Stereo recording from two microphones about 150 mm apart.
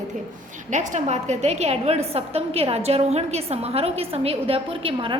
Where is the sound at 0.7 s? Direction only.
50° right (ahead or behind).